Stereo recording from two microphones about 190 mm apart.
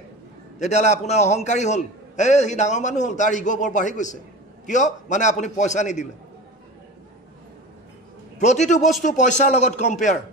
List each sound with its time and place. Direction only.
0.6 s a man's voice: 40° left (ahead or behind)
8.4 s a man's voice: 40° left (ahead or behind)